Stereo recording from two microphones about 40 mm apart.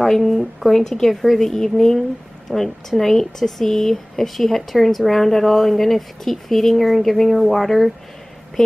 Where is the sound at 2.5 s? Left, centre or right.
Right.